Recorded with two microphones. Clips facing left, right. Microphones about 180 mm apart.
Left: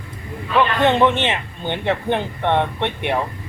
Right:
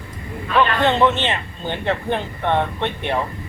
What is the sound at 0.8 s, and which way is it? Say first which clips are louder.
Speech: left 1 dB; 15° left (ahead or behind).